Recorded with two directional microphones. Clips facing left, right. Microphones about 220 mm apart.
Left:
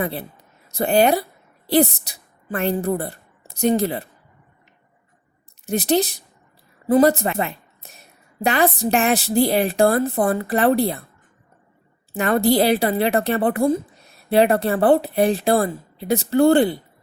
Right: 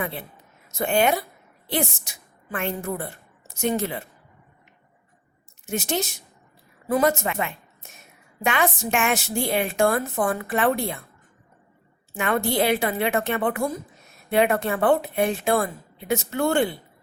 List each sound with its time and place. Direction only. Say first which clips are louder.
0.0 s a woman's voice: left 5 dB; 35° left (ahead or behind)
5.6 s a woman's voice: left 7 dB; 35° left (ahead or behind)
12.1 s a woman's voice: left 6 dB; 35° left (ahead or behind)